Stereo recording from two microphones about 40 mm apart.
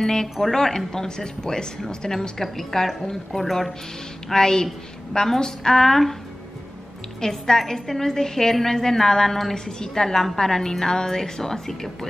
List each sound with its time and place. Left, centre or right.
0.0 s a woman's voice: centre
4.3 s a woman's voice: centre
7.2 s a woman's voice: centre